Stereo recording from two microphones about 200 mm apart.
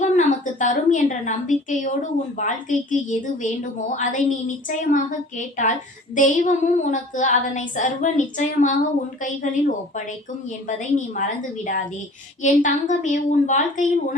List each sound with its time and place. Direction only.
0.0 s a woman's voice: 40° left (ahead or behind)
10.7 s a woman's voice: 40° left (ahead or behind)